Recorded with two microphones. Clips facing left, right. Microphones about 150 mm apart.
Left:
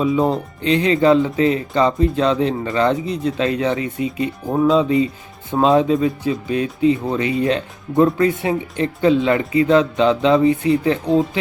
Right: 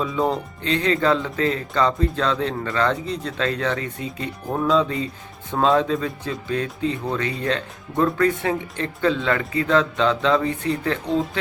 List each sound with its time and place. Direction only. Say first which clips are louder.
0.0 s speech: left 5 dB; 15° left (ahead or behind)